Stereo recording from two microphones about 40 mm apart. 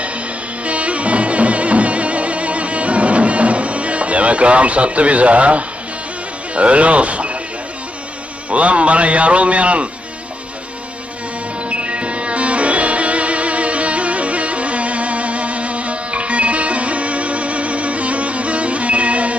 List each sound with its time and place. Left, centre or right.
0.6 s music: right
6.5 s speech: right
8.4 s a man's voice: right
11.7 s music: right